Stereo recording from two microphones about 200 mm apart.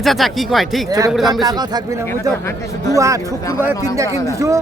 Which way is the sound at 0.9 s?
15° right (ahead or behind).